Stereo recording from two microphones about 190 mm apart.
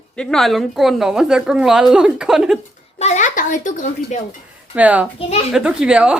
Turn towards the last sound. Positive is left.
turn(degrees=-5)  # may be behind; listen again after turning